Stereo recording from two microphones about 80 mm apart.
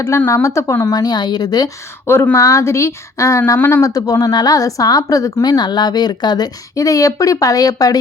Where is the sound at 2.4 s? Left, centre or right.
Left.